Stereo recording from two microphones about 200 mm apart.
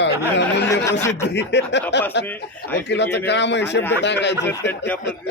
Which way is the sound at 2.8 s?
60° left (ahead or behind).